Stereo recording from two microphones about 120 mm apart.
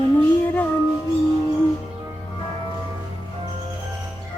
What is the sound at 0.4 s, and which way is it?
Music, 15° left (ahead or behind).